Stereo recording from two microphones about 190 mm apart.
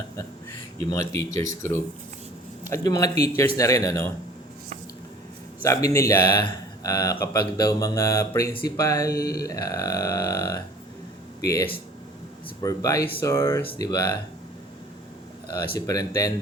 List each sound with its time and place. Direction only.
1.2 s speech: 15° left (ahead or behind)
5.6 s speech: 15° left (ahead or behind)
12.6 s speech: 15° left (ahead or behind)
15.5 s speech: 20° left (ahead or behind)